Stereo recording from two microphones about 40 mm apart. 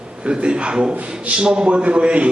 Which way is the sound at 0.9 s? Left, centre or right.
Right.